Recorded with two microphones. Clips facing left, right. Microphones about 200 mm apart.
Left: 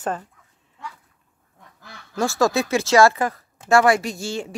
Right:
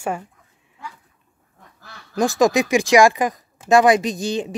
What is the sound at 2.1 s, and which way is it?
Speech, 15° right (ahead or behind).